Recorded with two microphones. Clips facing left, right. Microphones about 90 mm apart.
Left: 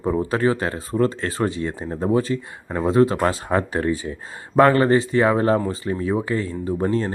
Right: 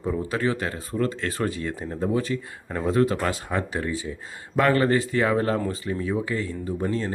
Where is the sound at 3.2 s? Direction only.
45° left (ahead or behind).